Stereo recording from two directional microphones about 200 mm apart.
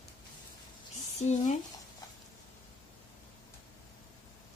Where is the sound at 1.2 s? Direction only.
35° left (ahead or behind).